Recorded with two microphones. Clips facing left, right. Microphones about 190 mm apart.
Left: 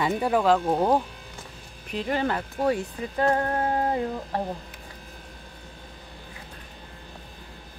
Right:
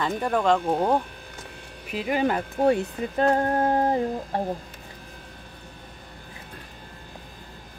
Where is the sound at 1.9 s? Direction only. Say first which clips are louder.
Right 2 dB; 10° right (ahead or behind).